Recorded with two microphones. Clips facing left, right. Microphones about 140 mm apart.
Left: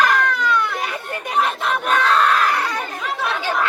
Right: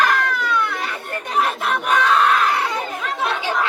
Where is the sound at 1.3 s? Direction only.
5° right (ahead or behind).